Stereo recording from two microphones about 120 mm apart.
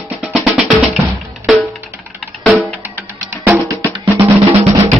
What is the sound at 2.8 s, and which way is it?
Music, 15° right (ahead or behind).